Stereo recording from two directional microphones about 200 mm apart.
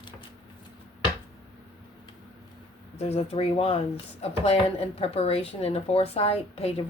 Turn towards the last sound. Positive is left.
turn(degrees=30)  # may be behind; listen again after turning